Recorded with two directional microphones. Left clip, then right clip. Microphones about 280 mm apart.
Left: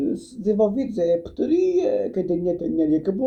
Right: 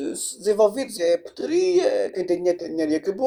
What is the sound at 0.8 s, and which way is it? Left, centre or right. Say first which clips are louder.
Speech: even; right.